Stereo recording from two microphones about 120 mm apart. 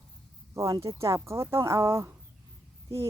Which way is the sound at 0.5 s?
25° right (ahead or behind).